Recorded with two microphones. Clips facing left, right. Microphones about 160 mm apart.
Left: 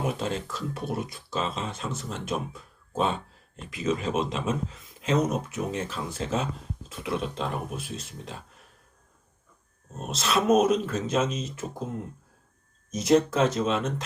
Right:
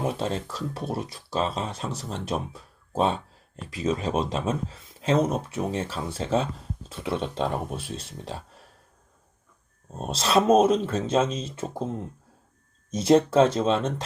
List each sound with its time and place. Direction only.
0.1 s speech: 30° right (ahead or behind)
10.0 s speech: 30° right (ahead or behind)
12.9 s speech: 30° right (ahead or behind)